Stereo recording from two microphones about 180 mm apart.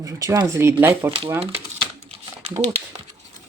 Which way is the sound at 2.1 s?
35° right (ahead or behind).